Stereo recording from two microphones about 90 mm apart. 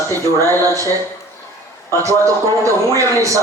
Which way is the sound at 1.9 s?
35° right (ahead or behind).